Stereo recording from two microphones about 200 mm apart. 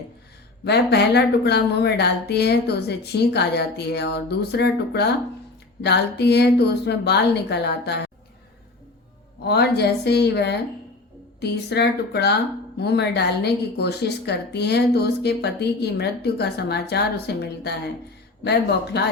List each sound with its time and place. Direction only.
0.6 s a woman's voice: 55° left (ahead or behind)
9.4 s a woman's voice: 55° left (ahead or behind)
18.9 s a woman's voice: 55° left (ahead or behind)